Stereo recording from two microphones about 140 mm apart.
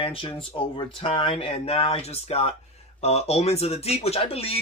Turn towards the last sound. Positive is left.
turn(degrees=45)  # may be behind; listen again after turning